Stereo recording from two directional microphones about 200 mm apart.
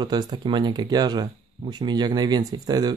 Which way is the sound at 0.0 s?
20° right (ahead or behind).